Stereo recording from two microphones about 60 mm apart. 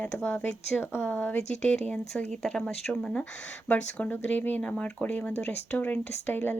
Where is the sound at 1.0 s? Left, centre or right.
Left.